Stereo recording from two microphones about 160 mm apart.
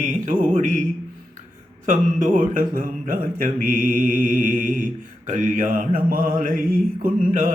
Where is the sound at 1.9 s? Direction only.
55° right (ahead or behind).